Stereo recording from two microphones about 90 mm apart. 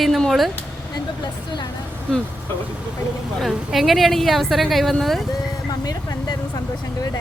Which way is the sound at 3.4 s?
Centre (ahead or behind).